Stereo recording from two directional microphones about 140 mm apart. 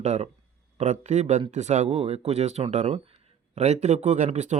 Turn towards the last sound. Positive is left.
turn(degrees=-60)  # may be behind; listen again after turning